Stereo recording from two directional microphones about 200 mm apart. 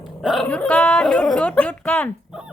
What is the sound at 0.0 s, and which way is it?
Speech, centre (ahead or behind).